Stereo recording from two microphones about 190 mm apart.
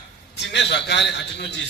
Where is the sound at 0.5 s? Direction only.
65° left (ahead or behind).